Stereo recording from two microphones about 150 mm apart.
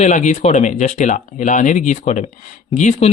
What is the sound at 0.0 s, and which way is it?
Speech, 55° left (ahead or behind).